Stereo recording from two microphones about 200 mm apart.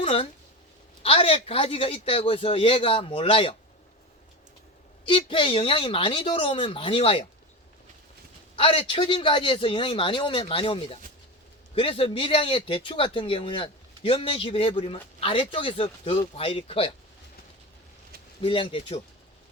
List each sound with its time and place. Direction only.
0.0 s speech: 25° left (ahead or behind)
5.0 s speech: 25° left (ahead or behind)
8.5 s speech: 30° left (ahead or behind)
18.4 s speech: 25° left (ahead or behind)